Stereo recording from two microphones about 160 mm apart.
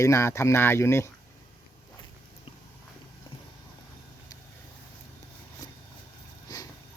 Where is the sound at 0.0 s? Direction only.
20° left (ahead or behind).